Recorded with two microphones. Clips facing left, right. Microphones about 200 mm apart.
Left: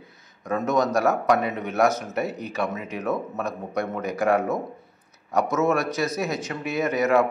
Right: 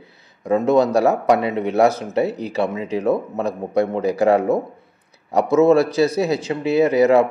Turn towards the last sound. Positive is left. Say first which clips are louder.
# right 7 dB
turn(degrees=-30)  # may be behind; listen again after turning